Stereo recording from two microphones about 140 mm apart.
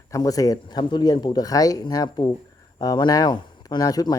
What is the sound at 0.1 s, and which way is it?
Speech, 25° left (ahead or behind).